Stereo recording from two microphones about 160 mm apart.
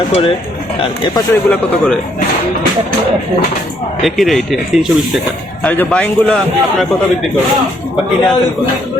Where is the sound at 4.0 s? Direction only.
Centre (ahead or behind).